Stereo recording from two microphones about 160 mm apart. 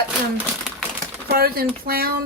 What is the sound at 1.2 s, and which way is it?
Speech, 75° right (ahead or behind).